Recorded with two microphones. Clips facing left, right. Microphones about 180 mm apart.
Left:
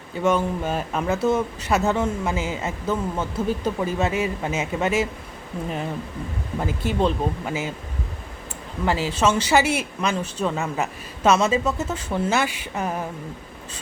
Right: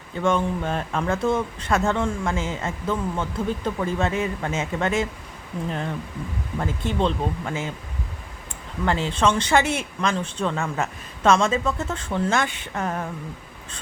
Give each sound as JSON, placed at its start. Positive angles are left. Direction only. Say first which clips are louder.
{"t": 0.2, "sound": "speech", "louder": "left 1 dB", "side_deg": 5}
{"t": 8.8, "sound": "speech", "louder": "even", "side_deg": 5}